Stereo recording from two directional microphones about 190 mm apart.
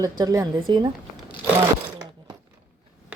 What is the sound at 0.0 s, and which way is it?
Speech, 20° right (ahead or behind).